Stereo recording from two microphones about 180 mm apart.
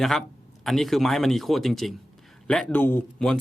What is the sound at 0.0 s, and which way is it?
A man's voice, centre (ahead or behind).